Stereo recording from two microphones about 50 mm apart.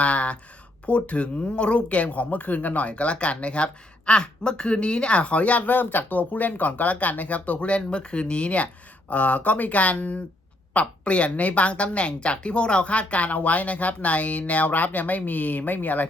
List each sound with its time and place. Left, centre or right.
0.0 s speech: left